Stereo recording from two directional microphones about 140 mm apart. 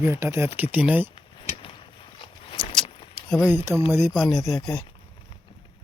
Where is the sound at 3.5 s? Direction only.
15° right (ahead or behind).